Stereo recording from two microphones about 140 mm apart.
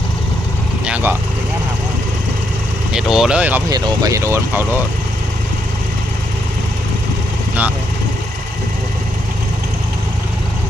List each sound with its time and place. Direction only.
0.9 s speech: 10° right (ahead or behind)
2.9 s speech: 5° right (ahead or behind)
3.7 s speech: 30° right (ahead or behind)